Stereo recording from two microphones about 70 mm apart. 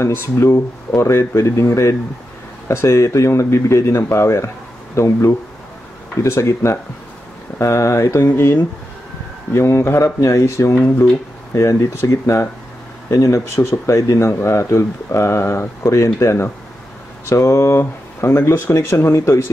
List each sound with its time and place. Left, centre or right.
0.0 s speech: left